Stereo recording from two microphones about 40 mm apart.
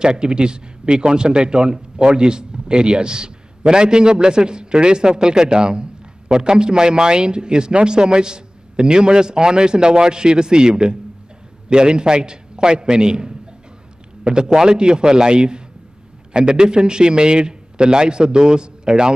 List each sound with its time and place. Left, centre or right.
0.0 s a man's voice: right